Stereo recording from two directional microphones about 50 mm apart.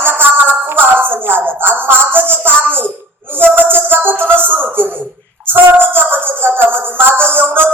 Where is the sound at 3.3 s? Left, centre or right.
Right.